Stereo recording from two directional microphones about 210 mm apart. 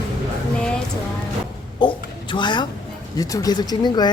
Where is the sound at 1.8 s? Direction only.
20° left (ahead or behind).